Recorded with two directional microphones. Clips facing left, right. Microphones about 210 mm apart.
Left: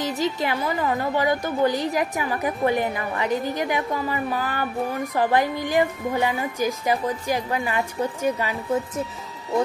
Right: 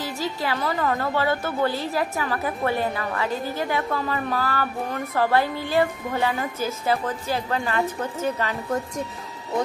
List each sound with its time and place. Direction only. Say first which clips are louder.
0.0 s a woman's voice: left 4 dB; 20° left (ahead or behind)